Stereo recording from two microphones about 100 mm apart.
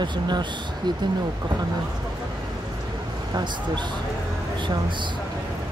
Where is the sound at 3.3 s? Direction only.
50° right (ahead or behind).